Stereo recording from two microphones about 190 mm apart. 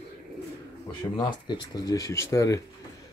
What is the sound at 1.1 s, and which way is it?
Speech, 25° left (ahead or behind).